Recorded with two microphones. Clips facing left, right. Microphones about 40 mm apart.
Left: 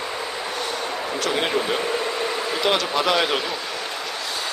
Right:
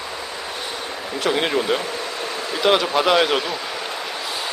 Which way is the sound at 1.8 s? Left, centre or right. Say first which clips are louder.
Left 3 dB; centre.